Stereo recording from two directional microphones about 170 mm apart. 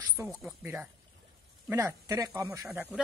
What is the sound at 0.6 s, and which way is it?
Speech, 10° right (ahead or behind).